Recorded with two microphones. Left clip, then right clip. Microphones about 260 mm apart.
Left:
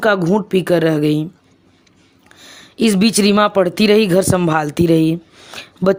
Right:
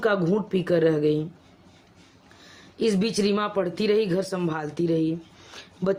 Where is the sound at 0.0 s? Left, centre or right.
Left.